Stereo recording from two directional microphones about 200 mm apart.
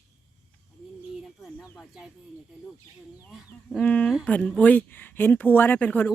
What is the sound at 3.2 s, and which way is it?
Speech, centre (ahead or behind).